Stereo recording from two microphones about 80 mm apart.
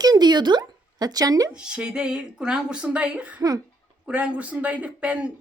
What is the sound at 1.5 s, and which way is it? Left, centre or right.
Speech, centre.